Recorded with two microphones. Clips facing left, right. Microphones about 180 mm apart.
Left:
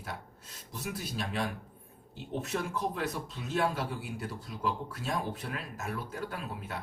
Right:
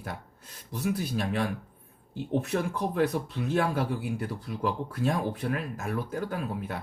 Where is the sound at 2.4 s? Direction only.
60° right (ahead or behind).